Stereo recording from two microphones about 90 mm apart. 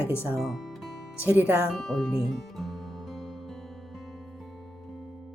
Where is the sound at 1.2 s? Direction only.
20° right (ahead or behind).